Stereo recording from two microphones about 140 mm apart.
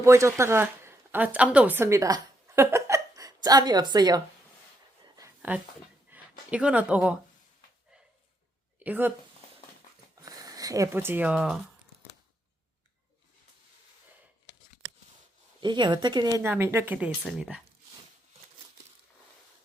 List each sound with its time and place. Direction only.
0.0 s speech: 20° right (ahead or behind)
5.0 s a sound: 25° right (ahead or behind)
6.1 s speech: 10° right (ahead or behind)
8.8 s speech: 15° right (ahead or behind)
10.2 s speech: 25° right (ahead or behind); by 11.6 s 5° right (ahead or behind)
15.6 s speech: 30° right (ahead or behind)
16.4 s a woman's voice: 15° right (ahead or behind)
17.1 s speech: centre (ahead or behind)